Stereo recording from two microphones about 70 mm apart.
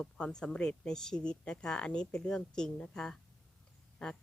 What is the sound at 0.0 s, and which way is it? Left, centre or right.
A woman's voice, centre.